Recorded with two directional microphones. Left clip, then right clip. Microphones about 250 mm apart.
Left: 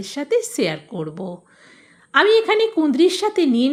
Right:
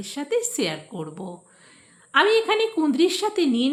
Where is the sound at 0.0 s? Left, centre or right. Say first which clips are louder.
Left 5 dB; left.